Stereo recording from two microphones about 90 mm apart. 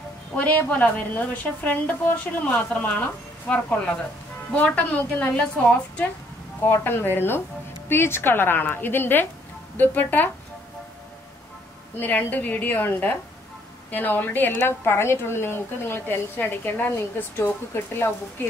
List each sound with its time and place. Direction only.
0.4 s a woman's voice: 15° left (ahead or behind)
12.0 s a woman's voice: 20° left (ahead or behind)